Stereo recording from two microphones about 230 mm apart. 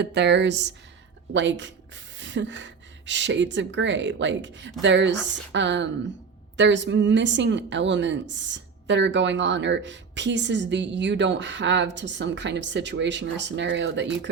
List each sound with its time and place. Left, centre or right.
0.0 s a woman's voice: right